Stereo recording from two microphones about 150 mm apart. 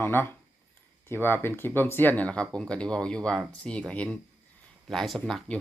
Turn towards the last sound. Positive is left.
turn(degrees=0)  # may be behind; listen again after turning